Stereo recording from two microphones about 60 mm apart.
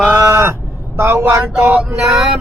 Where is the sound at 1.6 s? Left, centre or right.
Right.